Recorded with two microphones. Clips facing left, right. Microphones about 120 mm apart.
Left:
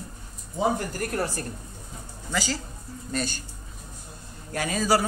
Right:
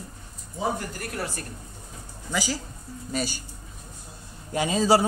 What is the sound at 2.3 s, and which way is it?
Speech, 10° right (ahead or behind).